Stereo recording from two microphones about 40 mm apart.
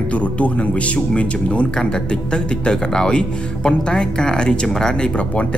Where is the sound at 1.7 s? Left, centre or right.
Centre.